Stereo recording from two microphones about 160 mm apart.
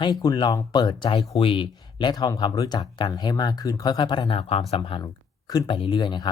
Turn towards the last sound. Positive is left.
turn(degrees=30)  # may be behind; listen again after turning